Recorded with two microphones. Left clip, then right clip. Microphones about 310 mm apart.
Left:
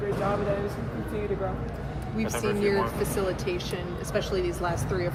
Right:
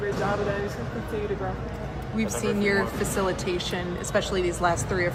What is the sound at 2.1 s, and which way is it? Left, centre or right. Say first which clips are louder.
Speech: right 1 dB; right.